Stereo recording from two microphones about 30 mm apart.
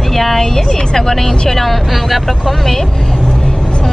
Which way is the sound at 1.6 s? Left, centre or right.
Centre.